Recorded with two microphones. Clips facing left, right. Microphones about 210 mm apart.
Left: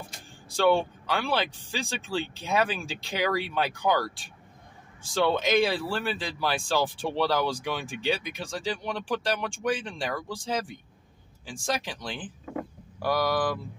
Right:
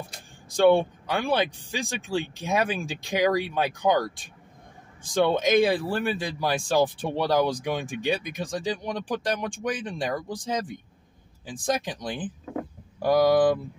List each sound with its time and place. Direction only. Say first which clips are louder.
0.5 s speech: right 4 dB; 15° right (ahead or behind)